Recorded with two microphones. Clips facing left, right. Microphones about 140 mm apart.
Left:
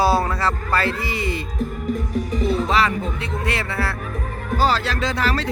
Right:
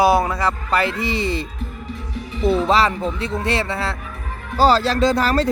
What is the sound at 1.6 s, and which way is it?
Speech, 45° left (ahead or behind).